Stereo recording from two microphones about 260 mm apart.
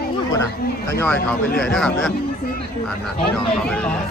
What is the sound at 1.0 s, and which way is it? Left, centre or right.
A man's voice, centre.